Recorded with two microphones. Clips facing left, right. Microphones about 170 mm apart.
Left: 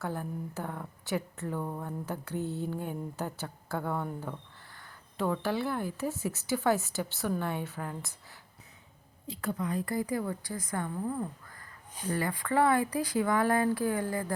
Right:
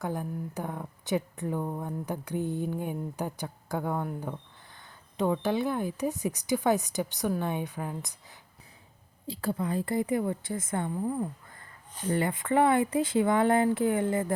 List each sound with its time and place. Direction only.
0.0 s speech: 15° right (ahead or behind)
9.2 s a woman's voice: 30° right (ahead or behind)